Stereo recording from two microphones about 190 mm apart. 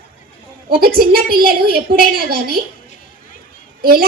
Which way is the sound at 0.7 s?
50° right (ahead or behind).